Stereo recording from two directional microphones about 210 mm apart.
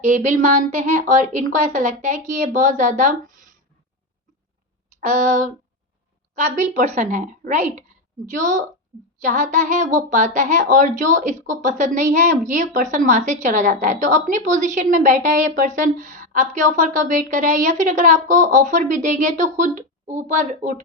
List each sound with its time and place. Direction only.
0.1 s a woman's voice: 40° right (ahead or behind)
5.0 s a woman's voice: 35° right (ahead or behind)